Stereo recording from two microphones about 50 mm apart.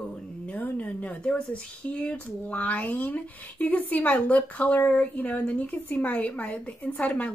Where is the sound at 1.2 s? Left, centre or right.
Centre.